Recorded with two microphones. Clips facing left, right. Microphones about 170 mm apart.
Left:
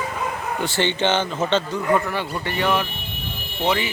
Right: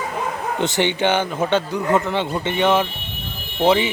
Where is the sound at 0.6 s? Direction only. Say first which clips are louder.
Right 3 dB; 20° right (ahead or behind).